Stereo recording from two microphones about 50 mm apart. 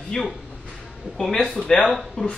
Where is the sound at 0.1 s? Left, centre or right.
Centre.